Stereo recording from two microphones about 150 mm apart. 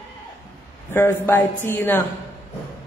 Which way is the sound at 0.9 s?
15° left (ahead or behind).